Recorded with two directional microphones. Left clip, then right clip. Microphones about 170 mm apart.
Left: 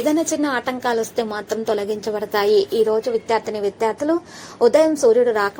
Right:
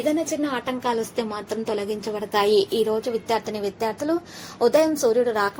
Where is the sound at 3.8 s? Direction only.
20° right (ahead or behind).